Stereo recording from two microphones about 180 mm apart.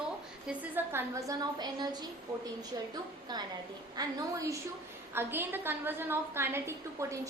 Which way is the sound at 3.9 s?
20° right (ahead or behind).